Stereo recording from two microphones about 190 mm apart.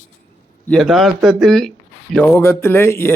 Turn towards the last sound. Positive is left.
turn(degrees=10)  # may be behind; listen again after turning